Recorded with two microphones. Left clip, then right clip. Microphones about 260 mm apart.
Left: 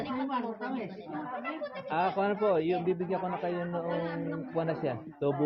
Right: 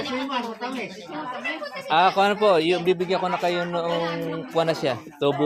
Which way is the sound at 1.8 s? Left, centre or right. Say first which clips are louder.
Right 11 dB; right.